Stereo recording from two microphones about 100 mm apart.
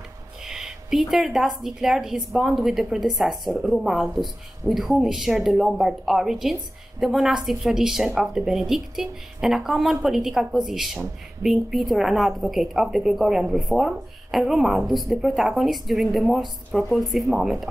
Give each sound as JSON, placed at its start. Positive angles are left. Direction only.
{"t": 0.5, "sound": "a woman's voice", "side_deg": -5}